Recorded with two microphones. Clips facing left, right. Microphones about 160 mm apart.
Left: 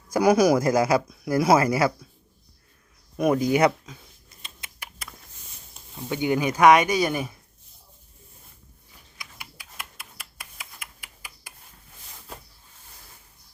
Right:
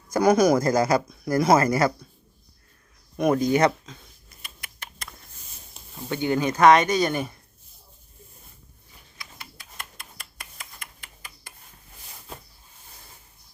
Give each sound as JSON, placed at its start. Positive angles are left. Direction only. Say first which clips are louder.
{"t": 0.1, "sound": "speech", "louder": "even", "side_deg": 10}
{"t": 3.2, "sound": "speech", "louder": "even", "side_deg": 5}
{"t": 4.3, "sound": "typing", "louder": "even", "side_deg": 20}
{"t": 4.8, "sound": "a sound", "louder": "even", "side_deg": 5}
{"t": 6.1, "sound": "speech", "louder": "even", "side_deg": 15}
{"t": 9.1, "sound": "a sound", "louder": "even", "side_deg": 10}